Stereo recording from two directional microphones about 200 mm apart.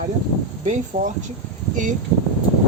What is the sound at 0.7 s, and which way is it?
Speech, 40° right (ahead or behind).